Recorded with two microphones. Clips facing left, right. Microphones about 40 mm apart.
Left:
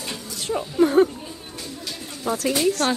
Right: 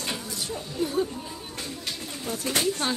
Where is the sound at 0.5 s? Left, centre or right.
Left.